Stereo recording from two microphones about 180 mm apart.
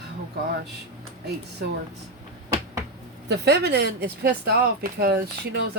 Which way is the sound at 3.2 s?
65° right (ahead or behind).